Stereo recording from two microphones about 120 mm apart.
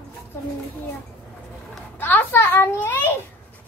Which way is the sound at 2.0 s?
15° left (ahead or behind).